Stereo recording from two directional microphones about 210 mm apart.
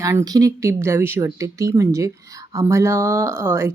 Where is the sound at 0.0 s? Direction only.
15° right (ahead or behind).